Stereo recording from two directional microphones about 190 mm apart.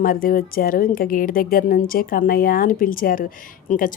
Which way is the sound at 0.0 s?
50° left (ahead or behind).